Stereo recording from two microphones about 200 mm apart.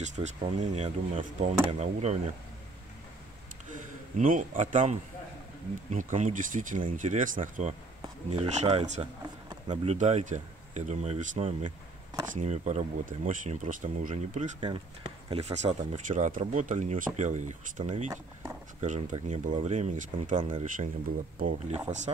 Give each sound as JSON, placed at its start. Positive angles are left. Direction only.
{"t": 0.0, "sound": "speech", "side_deg": -35}
{"t": 4.2, "sound": "speech", "side_deg": -40}
{"t": 9.5, "sound": "a sound", "side_deg": -25}
{"t": 9.9, "sound": "speech", "side_deg": -35}
{"t": 14.6, "sound": "speech", "side_deg": -25}